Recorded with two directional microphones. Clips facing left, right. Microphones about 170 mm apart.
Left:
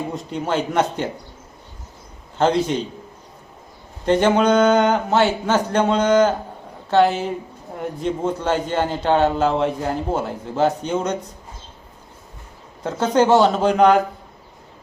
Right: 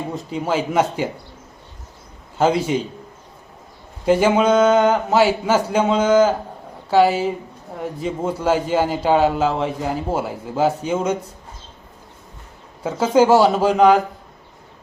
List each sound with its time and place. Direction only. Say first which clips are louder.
0.2 s a man's voice: right 2 dB; 5° right (ahead or behind)
2.4 s a man's voice: right 1 dB; 5° right (ahead or behind)
4.0 s a man's voice: right 1 dB; 5° right (ahead or behind)
12.8 s a man's voice: right 2 dB; 5° right (ahead or behind)